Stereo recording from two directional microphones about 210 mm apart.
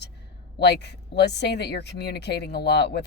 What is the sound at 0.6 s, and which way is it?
Speech, 55° left (ahead or behind).